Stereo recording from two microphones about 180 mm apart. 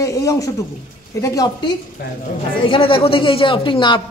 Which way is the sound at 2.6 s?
30° left (ahead or behind).